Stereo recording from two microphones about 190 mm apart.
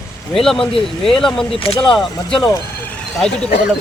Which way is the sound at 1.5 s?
30° left (ahead or behind).